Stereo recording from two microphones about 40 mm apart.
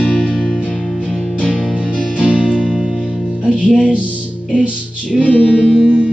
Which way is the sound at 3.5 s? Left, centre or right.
Left.